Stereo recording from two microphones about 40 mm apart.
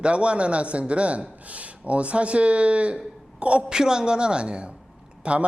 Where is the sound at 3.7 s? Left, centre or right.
Centre.